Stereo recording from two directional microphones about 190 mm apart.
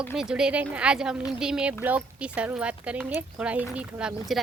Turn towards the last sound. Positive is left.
turn(degrees=-5)  # may be behind; listen again after turning